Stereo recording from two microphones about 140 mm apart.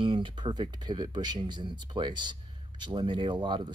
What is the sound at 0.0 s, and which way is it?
Speech, 35° right (ahead or behind).